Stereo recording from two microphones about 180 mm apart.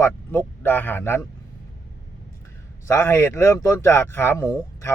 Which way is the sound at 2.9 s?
15° left (ahead or behind).